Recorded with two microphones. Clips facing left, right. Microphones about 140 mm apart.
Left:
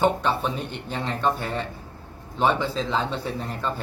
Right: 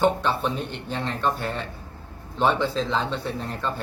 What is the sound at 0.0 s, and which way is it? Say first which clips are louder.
Speech: even; centre (ahead or behind).